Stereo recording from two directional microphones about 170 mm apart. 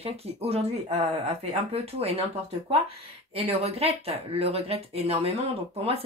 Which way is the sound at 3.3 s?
35° right (ahead or behind).